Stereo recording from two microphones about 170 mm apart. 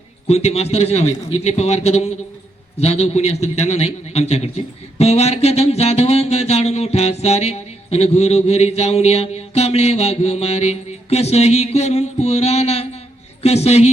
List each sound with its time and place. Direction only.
0.3 s a man's voice: 40° left (ahead or behind)